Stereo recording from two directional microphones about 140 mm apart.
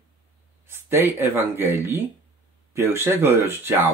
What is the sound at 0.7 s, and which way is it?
Speech, 15° right (ahead or behind).